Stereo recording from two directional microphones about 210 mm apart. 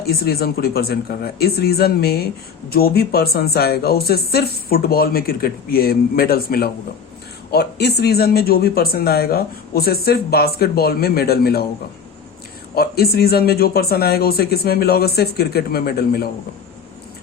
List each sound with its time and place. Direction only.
0.0 s speech: 45° left (ahead or behind)
12.7 s speech: 45° left (ahead or behind)